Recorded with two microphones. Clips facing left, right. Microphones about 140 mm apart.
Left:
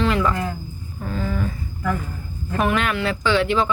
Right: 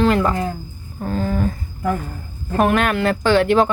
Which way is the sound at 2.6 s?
50° right (ahead or behind).